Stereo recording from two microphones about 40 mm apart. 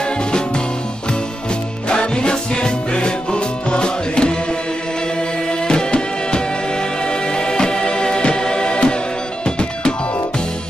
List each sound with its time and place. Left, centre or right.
1.9 s music: left
5.5 s music: left